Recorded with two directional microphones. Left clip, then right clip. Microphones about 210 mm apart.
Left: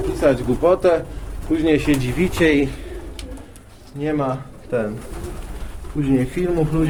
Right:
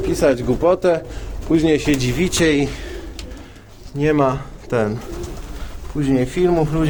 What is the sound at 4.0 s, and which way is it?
Speech, 45° right (ahead or behind).